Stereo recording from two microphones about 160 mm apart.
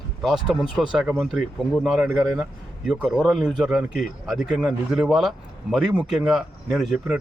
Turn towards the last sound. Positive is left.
turn(degrees=-5)  # may be behind; listen again after turning